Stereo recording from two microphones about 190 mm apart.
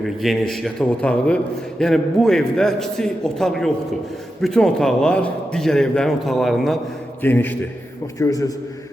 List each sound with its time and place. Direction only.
0.0 s a man's voice: centre (ahead or behind); by 8.5 s 15° left (ahead or behind)